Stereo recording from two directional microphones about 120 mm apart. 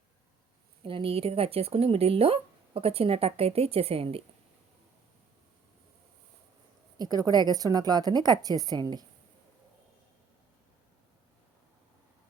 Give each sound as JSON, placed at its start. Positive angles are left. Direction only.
{"t": 0.9, "sound": "speech", "side_deg": -50}
{"t": 7.0, "sound": "a woman's voice", "side_deg": -30}